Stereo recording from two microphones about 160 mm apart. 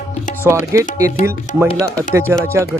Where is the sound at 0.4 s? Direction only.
15° right (ahead or behind).